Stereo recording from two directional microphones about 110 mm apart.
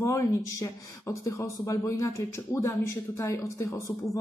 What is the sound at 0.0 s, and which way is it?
Speech, 25° left (ahead or behind).